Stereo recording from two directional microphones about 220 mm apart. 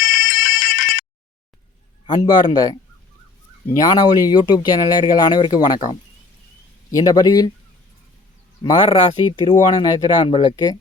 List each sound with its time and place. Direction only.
0.0 s fire alarm: 40° left (ahead or behind)
2.0 s a man's voice: 20° left (ahead or behind)
7.0 s a man's voice: 15° left (ahead or behind)
8.6 s speech: 25° left (ahead or behind)